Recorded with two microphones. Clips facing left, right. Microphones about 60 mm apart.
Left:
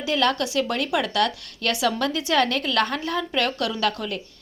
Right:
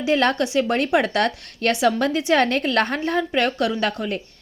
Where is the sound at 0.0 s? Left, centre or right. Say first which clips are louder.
Right 3 dB; right.